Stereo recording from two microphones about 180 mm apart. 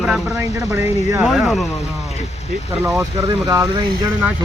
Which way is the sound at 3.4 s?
20° right (ahead or behind).